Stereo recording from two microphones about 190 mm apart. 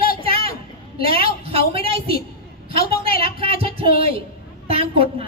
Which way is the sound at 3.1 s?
30° right (ahead or behind).